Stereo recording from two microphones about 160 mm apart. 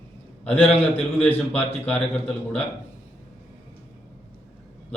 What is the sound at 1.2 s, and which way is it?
A man's voice, 10° left (ahead or behind).